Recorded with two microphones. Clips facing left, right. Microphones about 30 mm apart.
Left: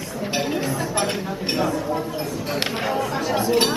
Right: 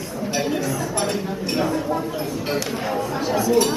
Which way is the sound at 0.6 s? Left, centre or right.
Left.